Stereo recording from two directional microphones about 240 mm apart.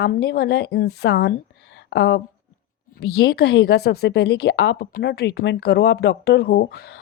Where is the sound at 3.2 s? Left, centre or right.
Left.